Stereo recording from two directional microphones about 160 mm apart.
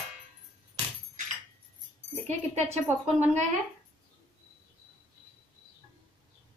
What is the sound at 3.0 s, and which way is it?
Speech, 45° right (ahead or behind).